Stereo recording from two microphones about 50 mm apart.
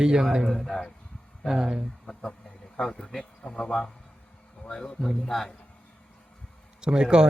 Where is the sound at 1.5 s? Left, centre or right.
Centre.